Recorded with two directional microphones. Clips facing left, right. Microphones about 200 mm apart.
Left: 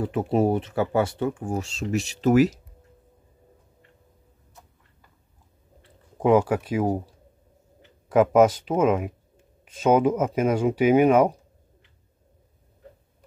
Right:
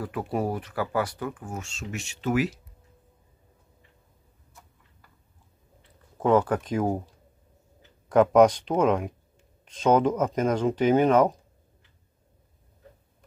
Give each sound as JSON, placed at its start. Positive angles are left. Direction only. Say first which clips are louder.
{"t": 0.0, "sound": "speech", "louder": "left 6 dB", "side_deg": 25}
{"t": 6.1, "sound": "speech", "louder": "left 2 dB", "side_deg": 10}
{"t": 8.1, "sound": "speech", "louder": "even", "side_deg": 5}